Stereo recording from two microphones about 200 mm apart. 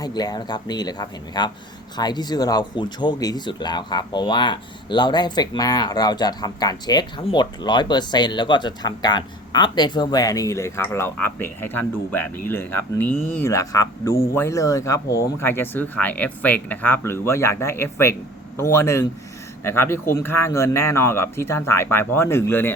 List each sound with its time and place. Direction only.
0.0 s speech: 20° left (ahead or behind)